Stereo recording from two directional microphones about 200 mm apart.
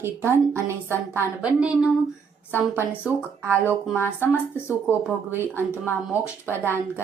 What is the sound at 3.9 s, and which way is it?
Speech, 10° left (ahead or behind).